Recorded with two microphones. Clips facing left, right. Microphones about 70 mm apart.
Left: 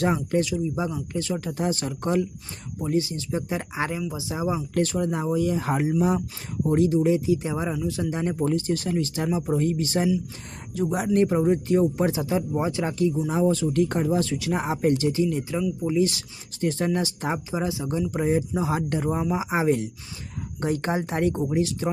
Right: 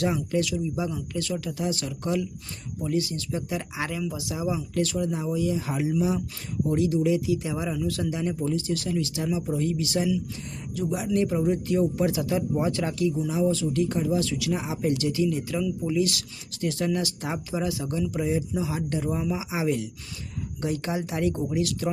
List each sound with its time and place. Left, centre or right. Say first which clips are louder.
0.0 s speech: left 2 dB; left
0.9 s speech: left 2 dB; left
6.9 s speech: left 2 dB; left
7.8 s speech: even; centre
8.1 s speech: left 3 dB; left
13.2 s speech: left 2 dB; left
14.9 s speech: left 2 dB; left
18.2 s speech: left 4 dB; left
21.5 s speech: left 2 dB; left